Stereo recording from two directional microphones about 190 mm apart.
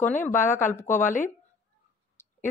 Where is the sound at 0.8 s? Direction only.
40° left (ahead or behind).